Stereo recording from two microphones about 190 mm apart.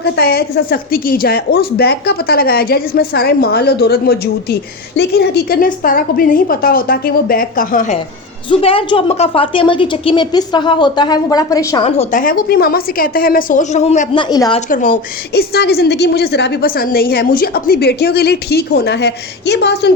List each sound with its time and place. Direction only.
0.0 s a woman's voice: 55° left (ahead or behind)
8.4 s a woman's voice: 25° left (ahead or behind)
11.8 s speech: 35° left (ahead or behind)
12.2 s a woman's voice: 50° left (ahead or behind); by 14.2 s 35° left (ahead or behind)
14.2 s a woman's voice: 20° left (ahead or behind)
14.7 s a woman's voice: 45° left (ahead or behind); by 19.9 s 60° left (ahead or behind)